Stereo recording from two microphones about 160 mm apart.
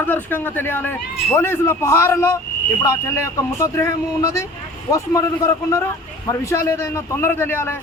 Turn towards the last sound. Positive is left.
turn(degrees=15)  # may be behind; listen again after turning